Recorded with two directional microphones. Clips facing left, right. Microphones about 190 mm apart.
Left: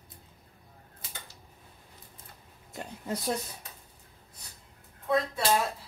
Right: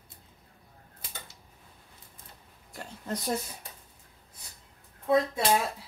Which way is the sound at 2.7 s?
20° left (ahead or behind).